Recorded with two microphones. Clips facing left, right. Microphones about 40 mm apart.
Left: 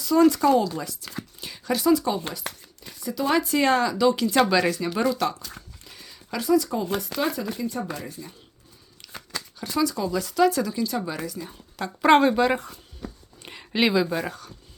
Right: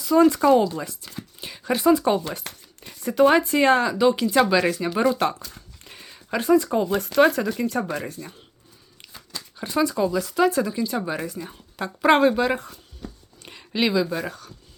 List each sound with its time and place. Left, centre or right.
0.0 s speech: centre
2.5 s a sound: right
3.2 s speech: right
5.1 s speech: right
5.8 s a sound: right
7.0 s speech: right
9.6 s speech: right
10.1 s speech: centre; by 11.5 s right
11.8 s a woman's voice: centre
13.4 s speech: centre